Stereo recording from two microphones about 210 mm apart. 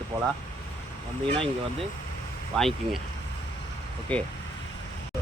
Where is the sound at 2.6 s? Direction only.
Centre (ahead or behind).